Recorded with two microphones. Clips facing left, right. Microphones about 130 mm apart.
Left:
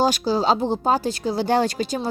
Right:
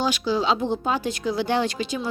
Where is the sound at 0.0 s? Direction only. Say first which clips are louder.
Left 3 dB; 40° left (ahead or behind).